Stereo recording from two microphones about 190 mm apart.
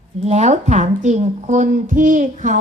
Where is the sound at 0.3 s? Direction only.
35° right (ahead or behind).